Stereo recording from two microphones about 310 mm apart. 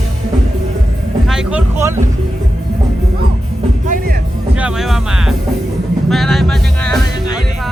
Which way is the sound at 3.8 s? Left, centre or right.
Right.